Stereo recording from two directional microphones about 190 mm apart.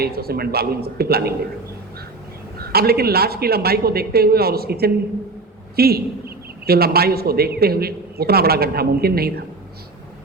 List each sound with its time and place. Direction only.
0.0 s a man's voice: 55° right (ahead or behind)
2.6 s a man's voice: 55° right (ahead or behind)